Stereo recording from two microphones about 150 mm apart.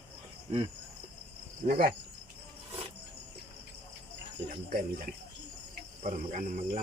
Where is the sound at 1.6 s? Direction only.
65° right (ahead or behind).